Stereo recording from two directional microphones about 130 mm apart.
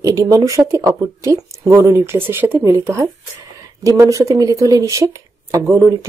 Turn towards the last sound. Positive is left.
turn(degrees=-20)  # may be behind; listen again after turning